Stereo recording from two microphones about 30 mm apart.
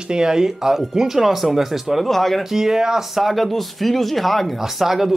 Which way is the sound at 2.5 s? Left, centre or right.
Centre.